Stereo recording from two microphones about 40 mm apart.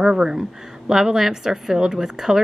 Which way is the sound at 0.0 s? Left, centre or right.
Centre.